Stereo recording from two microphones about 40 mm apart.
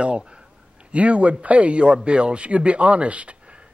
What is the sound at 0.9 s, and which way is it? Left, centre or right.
A man's voice, right.